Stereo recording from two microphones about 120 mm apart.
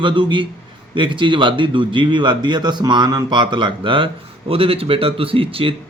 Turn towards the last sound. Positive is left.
turn(degrees=-50)  # may be behind; listen again after turning